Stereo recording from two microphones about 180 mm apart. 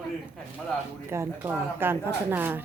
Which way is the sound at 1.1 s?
15° right (ahead or behind).